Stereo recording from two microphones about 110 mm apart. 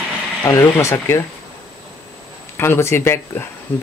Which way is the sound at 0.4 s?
30° left (ahead or behind).